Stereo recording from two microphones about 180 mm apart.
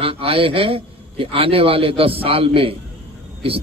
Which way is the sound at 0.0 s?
30° right (ahead or behind).